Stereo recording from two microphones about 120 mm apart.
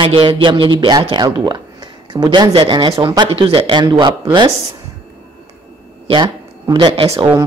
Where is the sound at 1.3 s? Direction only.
35° right (ahead or behind).